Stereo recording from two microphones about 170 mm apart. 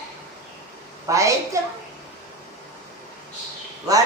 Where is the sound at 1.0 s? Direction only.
20° right (ahead or behind).